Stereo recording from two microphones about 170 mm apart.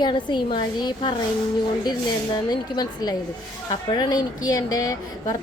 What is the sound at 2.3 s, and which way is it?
A woman's voice, 25° left (ahead or behind).